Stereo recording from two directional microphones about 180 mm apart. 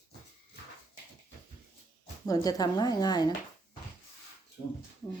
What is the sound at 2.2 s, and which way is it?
A woman's voice, 20° left (ahead or behind).